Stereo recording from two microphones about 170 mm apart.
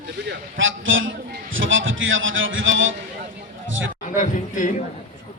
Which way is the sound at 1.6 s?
90° right.